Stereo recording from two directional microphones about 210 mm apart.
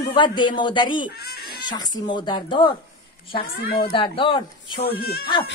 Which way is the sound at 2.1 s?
20° left (ahead or behind).